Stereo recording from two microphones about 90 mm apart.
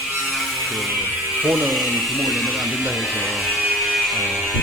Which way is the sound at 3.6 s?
5° right (ahead or behind).